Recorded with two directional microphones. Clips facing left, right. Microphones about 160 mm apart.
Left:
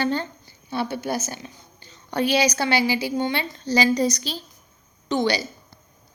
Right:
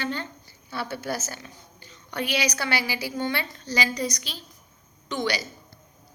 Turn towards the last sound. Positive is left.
turn(degrees=30)  # may be behind; listen again after turning